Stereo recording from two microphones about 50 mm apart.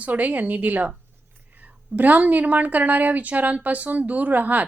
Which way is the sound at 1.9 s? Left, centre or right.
Right.